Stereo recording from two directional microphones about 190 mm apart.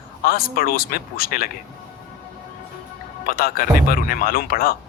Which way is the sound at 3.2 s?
50° left (ahead or behind).